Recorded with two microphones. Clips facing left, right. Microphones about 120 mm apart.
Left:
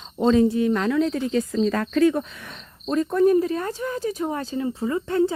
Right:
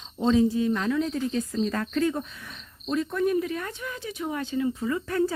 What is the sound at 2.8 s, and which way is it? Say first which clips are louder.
Speech: left 7 dB; 45° left (ahead or behind).